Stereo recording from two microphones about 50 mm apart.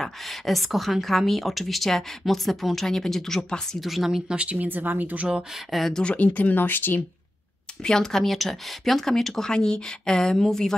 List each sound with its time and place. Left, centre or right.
0.0 s a woman's voice: centre
3.8 s speech: centre
4.3 s speech: right
4.6 s speech: right
5.7 s speech: centre
6.0 s speech: left
7.8 s speech: centre